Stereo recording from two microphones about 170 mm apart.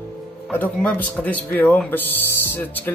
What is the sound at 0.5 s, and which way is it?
Speech, 10° left (ahead or behind).